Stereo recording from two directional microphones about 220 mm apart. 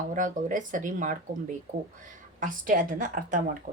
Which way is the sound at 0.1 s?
35° right (ahead or behind).